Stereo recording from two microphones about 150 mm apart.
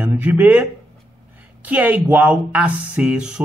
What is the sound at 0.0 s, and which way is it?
Speech, 10° right (ahead or behind).